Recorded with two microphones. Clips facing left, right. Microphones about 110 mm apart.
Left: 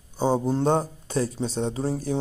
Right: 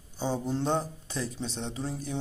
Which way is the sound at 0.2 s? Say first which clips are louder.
Left 8 dB; 45° left (ahead or behind).